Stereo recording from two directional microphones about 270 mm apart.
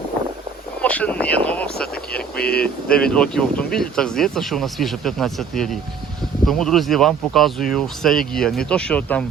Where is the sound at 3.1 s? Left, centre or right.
Centre.